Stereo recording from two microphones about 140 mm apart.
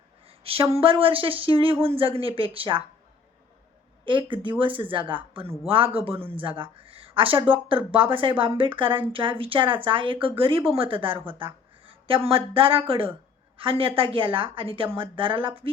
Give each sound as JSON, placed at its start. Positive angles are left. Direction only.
{"t": 0.3, "sound": "speech", "side_deg": -40}
{"t": 4.0, "sound": "a woman's voice", "side_deg": -35}